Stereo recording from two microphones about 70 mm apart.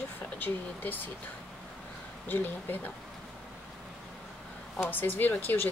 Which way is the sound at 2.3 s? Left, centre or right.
Left.